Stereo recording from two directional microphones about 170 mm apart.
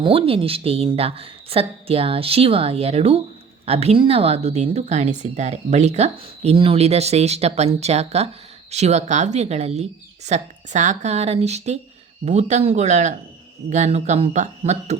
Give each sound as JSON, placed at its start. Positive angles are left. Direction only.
{"t": 0.0, "sound": "a woman's voice", "side_deg": -35}